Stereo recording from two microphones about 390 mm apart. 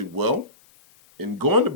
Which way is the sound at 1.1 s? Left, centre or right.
Right.